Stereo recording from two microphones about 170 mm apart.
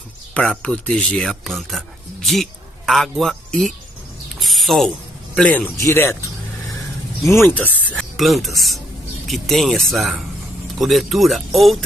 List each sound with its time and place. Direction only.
0.3 s speech: 5° left (ahead or behind)
4.4 s a sound: centre (ahead or behind)
5.8 s speech: 15° left (ahead or behind)
7.4 s speech: 10° left (ahead or behind)